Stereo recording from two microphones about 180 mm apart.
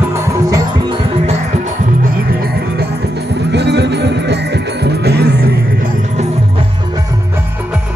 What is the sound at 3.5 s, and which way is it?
Music, 70° right (ahead or behind).